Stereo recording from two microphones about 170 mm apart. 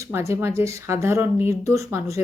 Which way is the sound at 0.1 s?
15° right (ahead or behind).